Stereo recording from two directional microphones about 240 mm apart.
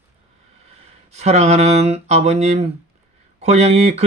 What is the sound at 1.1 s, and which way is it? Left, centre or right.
Speech, right.